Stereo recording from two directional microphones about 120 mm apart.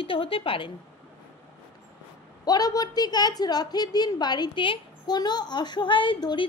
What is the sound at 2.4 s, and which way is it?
A woman's voice, 35° left (ahead or behind).